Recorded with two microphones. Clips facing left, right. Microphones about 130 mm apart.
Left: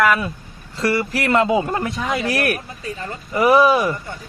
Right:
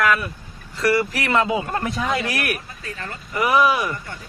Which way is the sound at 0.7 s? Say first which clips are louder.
Right 1 dB; 25° left (ahead or behind).